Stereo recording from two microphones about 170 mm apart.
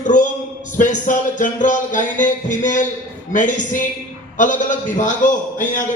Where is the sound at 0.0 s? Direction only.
50° left (ahead or behind).